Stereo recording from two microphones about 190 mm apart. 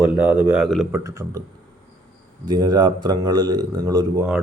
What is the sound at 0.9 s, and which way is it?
Speech, 15° right (ahead or behind).